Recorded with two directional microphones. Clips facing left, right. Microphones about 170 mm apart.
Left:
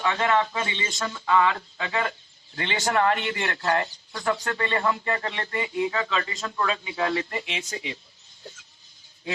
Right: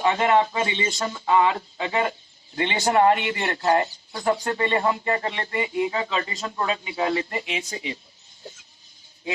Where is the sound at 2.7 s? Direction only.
30° right (ahead or behind).